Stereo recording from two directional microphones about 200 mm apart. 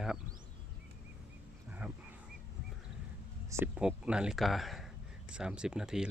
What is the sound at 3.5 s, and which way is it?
Speech, 5° right (ahead or behind).